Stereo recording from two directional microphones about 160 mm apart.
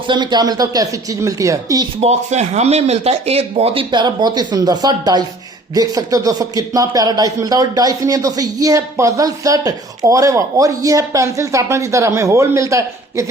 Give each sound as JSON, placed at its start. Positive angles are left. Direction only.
{"t": 0.1, "sound": "speech", "side_deg": -25}
{"t": 2.0, "sound": "speech", "side_deg": -45}